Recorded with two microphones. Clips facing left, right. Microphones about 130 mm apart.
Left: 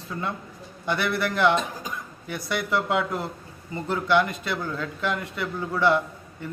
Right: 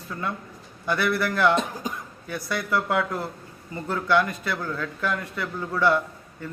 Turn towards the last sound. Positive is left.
turn(degrees=20)  # may be behind; listen again after turning